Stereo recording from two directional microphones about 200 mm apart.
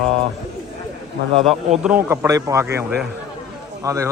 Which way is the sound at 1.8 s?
10° right (ahead or behind).